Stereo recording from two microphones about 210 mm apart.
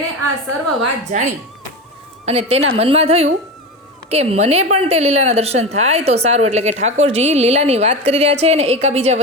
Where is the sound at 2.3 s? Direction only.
30° right (ahead or behind).